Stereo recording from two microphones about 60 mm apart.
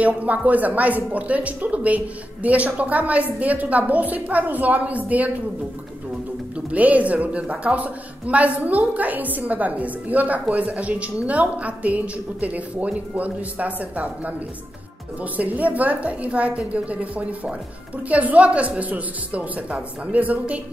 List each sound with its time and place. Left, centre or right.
0.0 s speech: right
6.5 s speech: right
15.3 s speech: right